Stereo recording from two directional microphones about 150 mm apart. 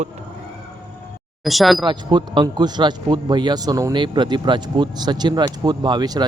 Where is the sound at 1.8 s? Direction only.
30° right (ahead or behind).